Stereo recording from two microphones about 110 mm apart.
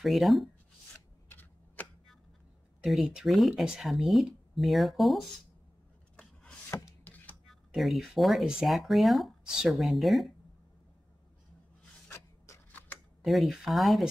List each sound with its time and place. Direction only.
0.0 s speech: centre (ahead or behind)
1.3 s a sound: 15° left (ahead or behind)
2.8 s speech: centre (ahead or behind)
6.7 s a sound: 25° left (ahead or behind)
7.4 s speech: centre (ahead or behind)
12.1 s printer: 20° left (ahead or behind)
13.2 s speech: centre (ahead or behind)